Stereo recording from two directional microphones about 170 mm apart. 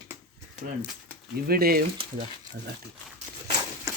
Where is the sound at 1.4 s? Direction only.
60° right (ahead or behind).